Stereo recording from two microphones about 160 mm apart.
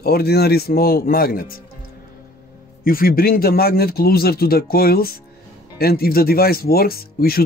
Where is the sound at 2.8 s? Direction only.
65° left (ahead or behind).